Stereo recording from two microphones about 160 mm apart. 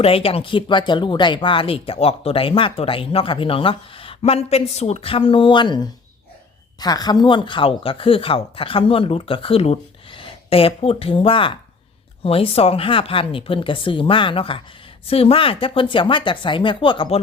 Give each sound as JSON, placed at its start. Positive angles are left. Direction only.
{"t": 0.0, "sound": "speech", "side_deg": 35}